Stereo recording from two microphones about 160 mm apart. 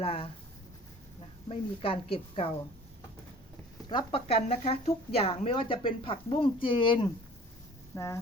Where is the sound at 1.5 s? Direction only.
35° left (ahead or behind).